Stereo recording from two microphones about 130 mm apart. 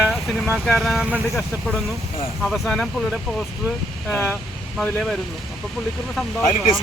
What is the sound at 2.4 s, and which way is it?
Speech, centre (ahead or behind).